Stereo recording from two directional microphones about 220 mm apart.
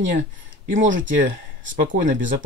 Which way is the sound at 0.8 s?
35° right (ahead or behind).